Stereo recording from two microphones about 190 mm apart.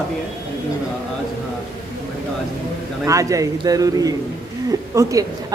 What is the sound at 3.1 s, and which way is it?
A man's voice, 15° right (ahead or behind).